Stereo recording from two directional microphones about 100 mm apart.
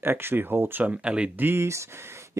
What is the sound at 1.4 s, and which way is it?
Speech, 25° right (ahead or behind).